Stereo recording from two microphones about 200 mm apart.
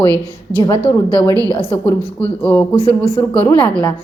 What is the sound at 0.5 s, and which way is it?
Speech, 25° left (ahead or behind).